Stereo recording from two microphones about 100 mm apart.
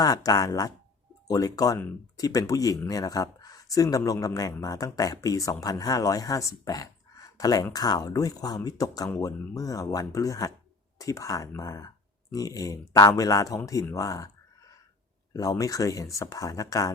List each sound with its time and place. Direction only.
0.0 s speech: 40° left (ahead or behind)
13.9 s a sound: 35° left (ahead or behind)
15.3 s speech: 35° left (ahead or behind)